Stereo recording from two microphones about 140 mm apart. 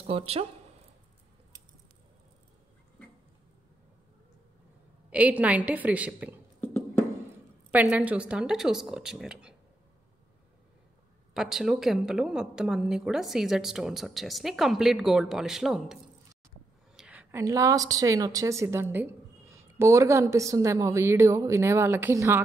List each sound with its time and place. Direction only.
0.0 s speech: 40° right (ahead or behind)
5.1 s a woman's voice: 10° right (ahead or behind)
7.7 s a woman's voice: 10° right (ahead or behind)
11.3 s a woman's voice: 5° right (ahead or behind); by 22.4 s 20° right (ahead or behind)